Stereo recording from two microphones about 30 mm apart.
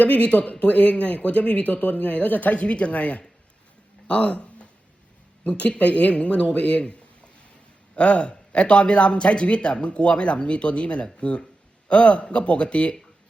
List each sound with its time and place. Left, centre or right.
0.0 s a man's voice: left
7.9 s a man's voice: left